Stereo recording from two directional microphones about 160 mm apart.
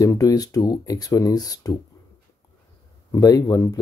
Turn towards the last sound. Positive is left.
turn(degrees=20)  # may be behind; listen again after turning